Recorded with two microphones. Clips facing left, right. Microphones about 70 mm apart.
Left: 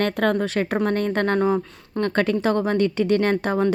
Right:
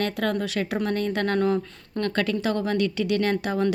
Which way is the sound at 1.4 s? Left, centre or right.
Centre.